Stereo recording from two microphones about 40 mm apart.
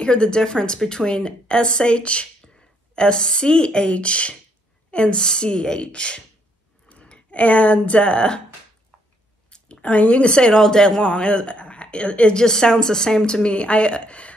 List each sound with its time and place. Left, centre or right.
0.0 s a woman's voice: left
9.5 s a sound: left
9.8 s a woman's voice: left
10.3 s a woman's voice: left
12.4 s a woman's voice: centre